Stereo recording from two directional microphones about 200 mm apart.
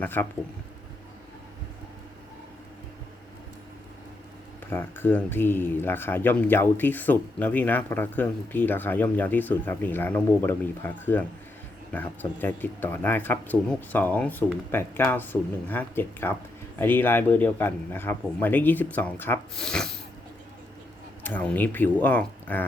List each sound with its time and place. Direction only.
0.0 s speech: 10° left (ahead or behind)
4.7 s speech: 10° left (ahead or behind)
21.2 s speech: 10° left (ahead or behind)